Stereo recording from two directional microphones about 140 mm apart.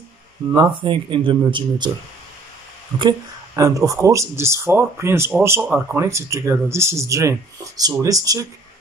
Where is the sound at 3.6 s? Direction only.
25° right (ahead or behind).